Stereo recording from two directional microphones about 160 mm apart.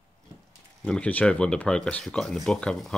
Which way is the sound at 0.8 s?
5° left (ahead or behind).